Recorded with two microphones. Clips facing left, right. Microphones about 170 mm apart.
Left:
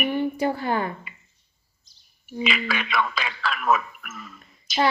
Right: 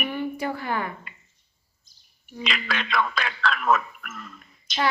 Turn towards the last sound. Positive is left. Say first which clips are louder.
# even
turn(degrees=5)  # may be behind; listen again after turning